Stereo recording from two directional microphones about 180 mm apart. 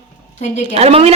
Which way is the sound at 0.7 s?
35° right (ahead or behind).